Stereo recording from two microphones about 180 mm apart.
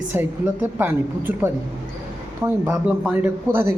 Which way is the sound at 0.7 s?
10° right (ahead or behind).